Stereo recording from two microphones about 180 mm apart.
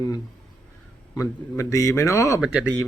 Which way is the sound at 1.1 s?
15° left (ahead or behind).